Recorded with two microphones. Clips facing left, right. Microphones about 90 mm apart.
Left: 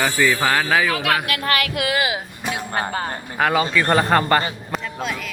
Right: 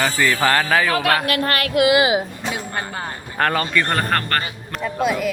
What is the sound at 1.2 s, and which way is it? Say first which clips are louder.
Speech: right 1 dB; 40° right (ahead or behind).